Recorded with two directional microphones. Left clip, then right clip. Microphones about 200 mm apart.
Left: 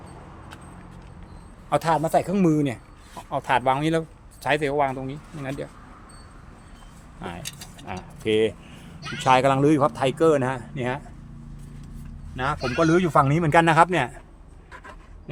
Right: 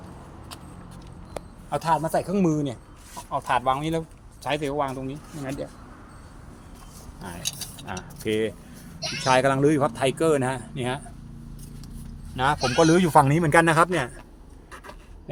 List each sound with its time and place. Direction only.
1.7 s speech: 35° left (ahead or behind)
7.9 s speech: 15° left (ahead or behind)
12.4 s speech: 25° right (ahead or behind)
13.2 s speech: centre (ahead or behind)